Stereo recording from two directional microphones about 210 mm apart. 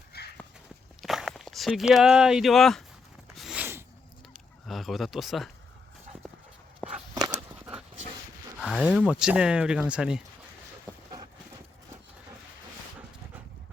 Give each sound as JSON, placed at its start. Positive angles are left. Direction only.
{"t": 0.1, "sound": "horse", "side_deg": 50}
{"t": 1.0, "sound": "speech", "side_deg": 0}
{"t": 3.3, "sound": "a sound", "side_deg": -5}
{"t": 4.6, "sound": "speech", "side_deg": 0}
{"t": 7.1, "sound": "a sound", "side_deg": -20}
{"t": 8.6, "sound": "speech", "side_deg": -5}